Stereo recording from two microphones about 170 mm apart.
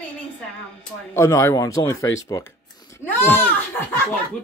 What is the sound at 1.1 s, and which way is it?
Speech, 15° left (ahead or behind).